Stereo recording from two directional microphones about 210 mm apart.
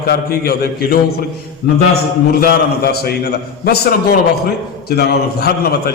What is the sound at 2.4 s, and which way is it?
A man's voice, 45° left (ahead or behind).